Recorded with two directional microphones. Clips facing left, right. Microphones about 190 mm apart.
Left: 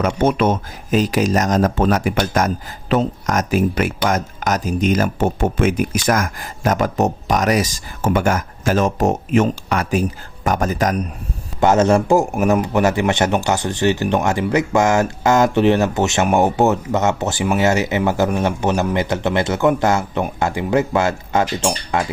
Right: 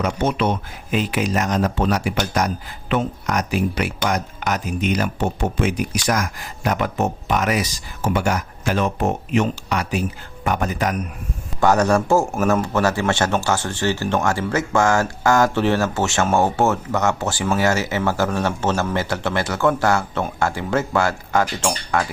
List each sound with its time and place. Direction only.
0.2 s speech: 50° left (ahead or behind)
11.6 s speech: 20° left (ahead or behind)